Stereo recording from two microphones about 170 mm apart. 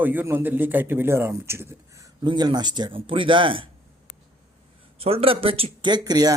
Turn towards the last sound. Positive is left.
turn(degrees=-20)  # may be behind; listen again after turning